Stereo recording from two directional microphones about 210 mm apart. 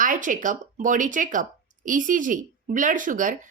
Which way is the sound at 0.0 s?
40° right (ahead or behind).